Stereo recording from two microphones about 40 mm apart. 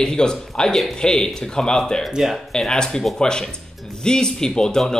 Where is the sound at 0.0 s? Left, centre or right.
Centre.